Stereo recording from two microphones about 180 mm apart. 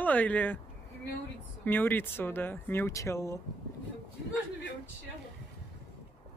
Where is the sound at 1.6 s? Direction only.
10° left (ahead or behind).